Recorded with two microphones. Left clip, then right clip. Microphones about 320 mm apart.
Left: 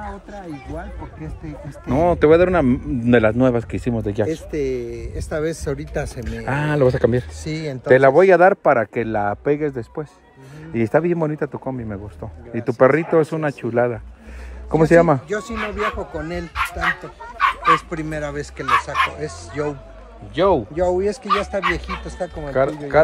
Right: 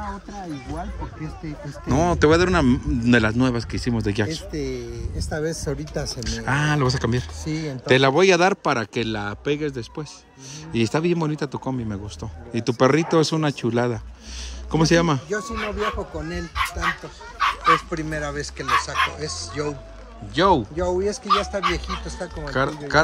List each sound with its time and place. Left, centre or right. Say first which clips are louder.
1.9 s speech: left 4 dB; centre
4.5 s speech: left 6 dB; centre
5.4 s speech: left 2 dB; left
5.9 s speech: left 2 dB; left
6.4 s speech: left 4 dB; centre
7.4 s speech: left 2 dB; left
7.9 s a man's voice: left 5 dB; centre
15.2 s speech: left 2 dB; left
17.6 s speech: left 2 dB; left
20.3 s speech: left 1 dB; centre
20.7 s speech: left 4 dB; left
22.5 s speech: left 3 dB; centre